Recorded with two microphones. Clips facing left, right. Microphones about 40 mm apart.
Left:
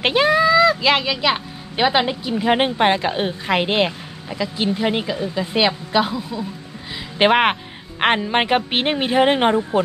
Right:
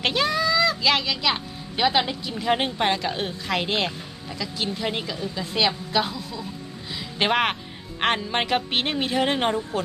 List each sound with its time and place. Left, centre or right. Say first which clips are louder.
0.0 s speech: left 7 dB; left